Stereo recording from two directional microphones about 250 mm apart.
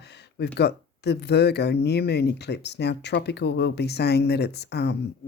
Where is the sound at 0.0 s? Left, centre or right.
Left.